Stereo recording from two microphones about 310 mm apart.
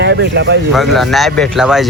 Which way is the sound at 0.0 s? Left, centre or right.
Right.